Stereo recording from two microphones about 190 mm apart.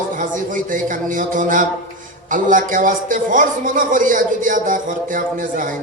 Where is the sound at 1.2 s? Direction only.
45° right (ahead or behind).